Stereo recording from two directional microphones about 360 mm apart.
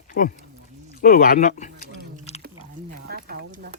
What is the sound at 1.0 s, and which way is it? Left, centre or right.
Speech, left.